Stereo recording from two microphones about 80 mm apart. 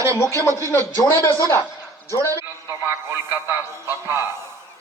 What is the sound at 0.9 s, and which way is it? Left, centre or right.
Speech, left.